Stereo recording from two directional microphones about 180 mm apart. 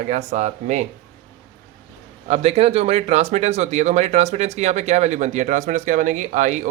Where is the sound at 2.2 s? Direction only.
35° right (ahead or behind).